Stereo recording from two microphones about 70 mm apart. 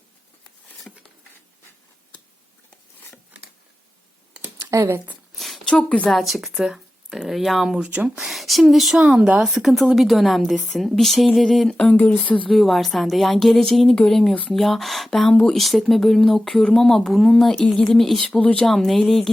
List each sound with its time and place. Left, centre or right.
4.7 s speech: right
5.3 s a sound: centre
6.1 s speech: centre
7.8 s speech: centre
8.2 s speech: centre
11.9 s speech: left
12.5 s speech: centre
18.3 s speech: centre
18.6 s speech: centre